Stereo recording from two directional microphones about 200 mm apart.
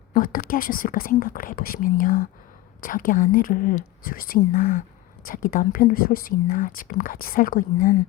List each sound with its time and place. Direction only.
0.1 s speech: 45° left (ahead or behind)